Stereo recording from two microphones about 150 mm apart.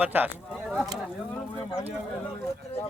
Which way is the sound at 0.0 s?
10° right (ahead or behind).